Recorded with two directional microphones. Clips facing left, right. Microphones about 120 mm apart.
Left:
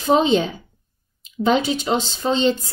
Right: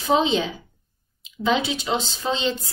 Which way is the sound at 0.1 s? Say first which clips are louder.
Left 4 dB; 40° left (ahead or behind).